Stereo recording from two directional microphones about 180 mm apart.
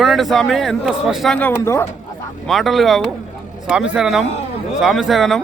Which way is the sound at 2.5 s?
Centre (ahead or behind).